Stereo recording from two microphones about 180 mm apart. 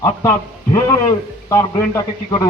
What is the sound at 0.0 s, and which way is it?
A man's voice, 15° left (ahead or behind).